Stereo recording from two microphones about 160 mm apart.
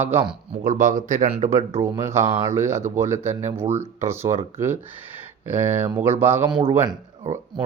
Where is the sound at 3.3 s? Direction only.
45° right (ahead or behind).